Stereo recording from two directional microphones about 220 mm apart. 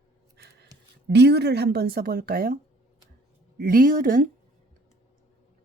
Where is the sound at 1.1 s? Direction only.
50° right (ahead or behind).